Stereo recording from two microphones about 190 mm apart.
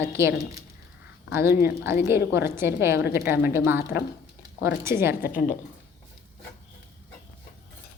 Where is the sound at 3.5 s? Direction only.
10° right (ahead or behind).